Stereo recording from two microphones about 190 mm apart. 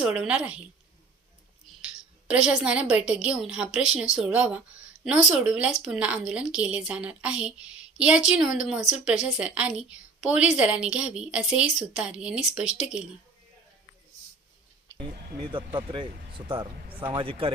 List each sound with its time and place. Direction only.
0.0 s a woman's voice: 5° right (ahead or behind)
2.3 s a woman's voice: 5° right (ahead or behind)
15.9 s speech: 25° right (ahead or behind)